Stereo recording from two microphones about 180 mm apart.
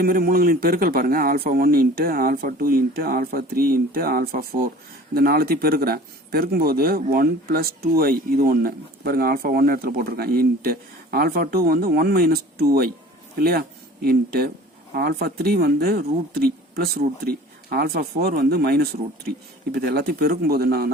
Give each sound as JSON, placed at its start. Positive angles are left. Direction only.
{"t": 0.0, "sound": "speech", "side_deg": -55}